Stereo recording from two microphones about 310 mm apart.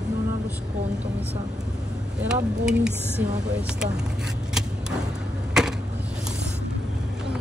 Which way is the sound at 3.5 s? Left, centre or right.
Centre.